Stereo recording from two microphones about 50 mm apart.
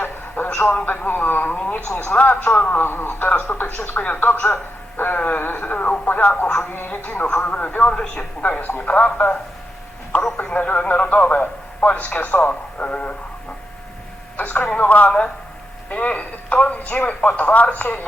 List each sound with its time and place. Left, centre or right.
0.0 s a sound: left
0.9 s speech: left
6.4 s speech: left
10.1 s telephone: left
10.5 s speech: left
12.5 s speech: left
14.3 s telephone: left
14.8 s speech: left